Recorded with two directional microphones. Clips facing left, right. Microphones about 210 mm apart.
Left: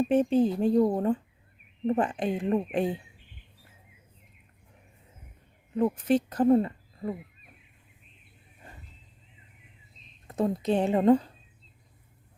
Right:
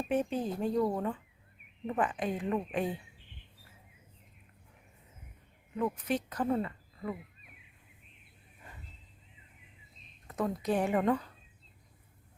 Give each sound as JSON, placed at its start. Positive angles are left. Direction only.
{"t": 0.1, "sound": "speech", "side_deg": 30}
{"t": 5.7, "sound": "speech", "side_deg": 30}
{"t": 10.2, "sound": "speech", "side_deg": 25}